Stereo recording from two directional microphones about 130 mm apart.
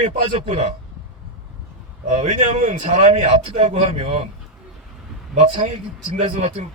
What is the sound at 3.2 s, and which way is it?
Speech, 50° right (ahead or behind).